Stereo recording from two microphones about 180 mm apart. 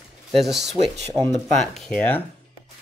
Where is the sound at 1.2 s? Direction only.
10° left (ahead or behind).